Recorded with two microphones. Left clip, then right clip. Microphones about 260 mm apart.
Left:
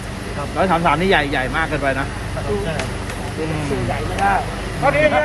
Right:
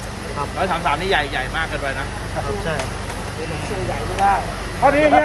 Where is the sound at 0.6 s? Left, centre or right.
Centre.